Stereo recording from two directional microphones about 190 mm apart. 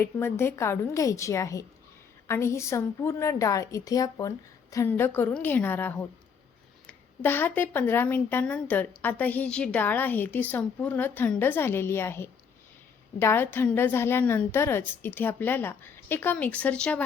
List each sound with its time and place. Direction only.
0.0 s a woman's voice: 10° left (ahead or behind)